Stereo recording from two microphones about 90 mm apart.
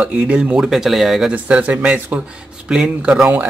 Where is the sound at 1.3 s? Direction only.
15° right (ahead or behind).